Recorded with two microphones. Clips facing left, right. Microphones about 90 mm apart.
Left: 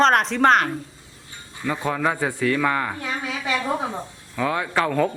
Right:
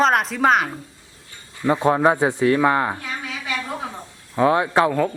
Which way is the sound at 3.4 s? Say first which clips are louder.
Left 5 dB; 20° left (ahead or behind).